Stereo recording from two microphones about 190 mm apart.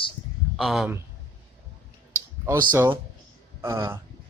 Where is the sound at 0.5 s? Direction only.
Centre (ahead or behind).